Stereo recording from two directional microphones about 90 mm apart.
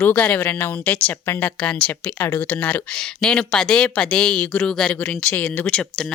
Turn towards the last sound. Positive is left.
turn(degrees=15)  # may be behind; listen again after turning